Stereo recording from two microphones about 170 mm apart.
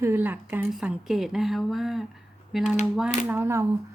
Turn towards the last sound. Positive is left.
turn(degrees=-15)  # may be behind; listen again after turning